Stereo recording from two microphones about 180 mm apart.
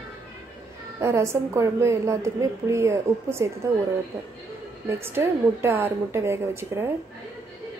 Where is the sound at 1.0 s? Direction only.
15° right (ahead or behind).